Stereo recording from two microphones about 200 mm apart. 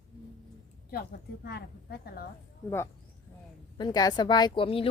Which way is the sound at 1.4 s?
50° left (ahead or behind).